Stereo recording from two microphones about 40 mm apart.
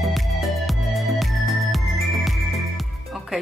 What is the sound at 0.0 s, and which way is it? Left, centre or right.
Music, centre.